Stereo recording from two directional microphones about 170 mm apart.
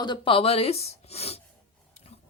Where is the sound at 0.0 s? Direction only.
30° left (ahead or behind).